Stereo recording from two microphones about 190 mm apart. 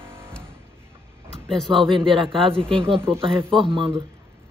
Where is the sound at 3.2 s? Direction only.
25° right (ahead or behind).